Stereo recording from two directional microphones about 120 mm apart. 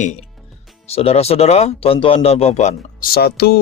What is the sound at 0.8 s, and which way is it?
Speech, 55° left (ahead or behind).